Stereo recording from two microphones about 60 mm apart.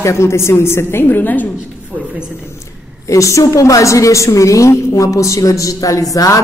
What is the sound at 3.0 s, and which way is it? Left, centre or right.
A woman's voice, left.